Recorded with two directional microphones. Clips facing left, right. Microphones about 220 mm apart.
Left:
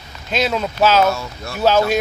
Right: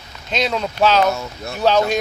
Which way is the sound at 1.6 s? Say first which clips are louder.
Left 1 dB; 5° left (ahead or behind).